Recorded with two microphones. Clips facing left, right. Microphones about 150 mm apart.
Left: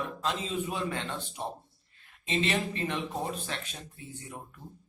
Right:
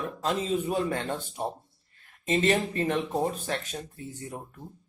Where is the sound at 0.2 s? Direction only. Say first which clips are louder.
Right 7 dB; 40° right (ahead or behind).